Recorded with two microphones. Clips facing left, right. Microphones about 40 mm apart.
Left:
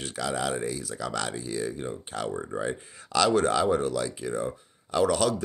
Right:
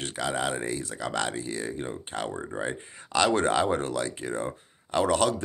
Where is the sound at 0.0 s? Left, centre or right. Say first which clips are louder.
Right 1 dB; right.